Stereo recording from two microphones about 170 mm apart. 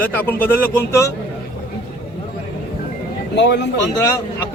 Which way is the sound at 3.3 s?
90° left.